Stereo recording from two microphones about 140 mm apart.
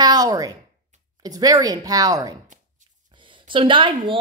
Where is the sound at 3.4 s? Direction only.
35° right (ahead or behind).